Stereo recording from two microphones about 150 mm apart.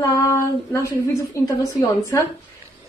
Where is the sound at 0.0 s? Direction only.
20° left (ahead or behind).